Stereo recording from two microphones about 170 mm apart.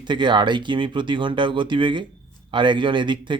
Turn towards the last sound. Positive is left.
turn(degrees=-30)  # may be behind; listen again after turning